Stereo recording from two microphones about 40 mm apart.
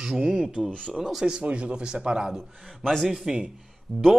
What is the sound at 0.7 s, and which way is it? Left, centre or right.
Speech, left.